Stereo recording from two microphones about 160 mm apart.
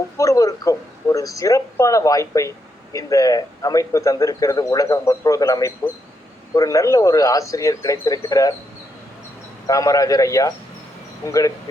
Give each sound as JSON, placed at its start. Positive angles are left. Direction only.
{"t": 0.2, "sound": "speech", "side_deg": 20}
{"t": 9.6, "sound": "speech", "side_deg": 20}